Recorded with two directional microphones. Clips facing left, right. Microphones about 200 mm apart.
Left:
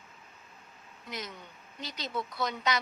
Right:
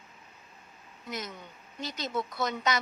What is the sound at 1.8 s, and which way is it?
Speech, 45° right (ahead or behind).